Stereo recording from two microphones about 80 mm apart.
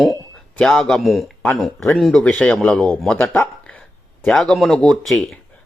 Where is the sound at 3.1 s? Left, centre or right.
Centre.